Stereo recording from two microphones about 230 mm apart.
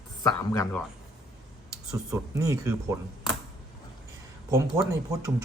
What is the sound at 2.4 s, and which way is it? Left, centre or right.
Speech, centre.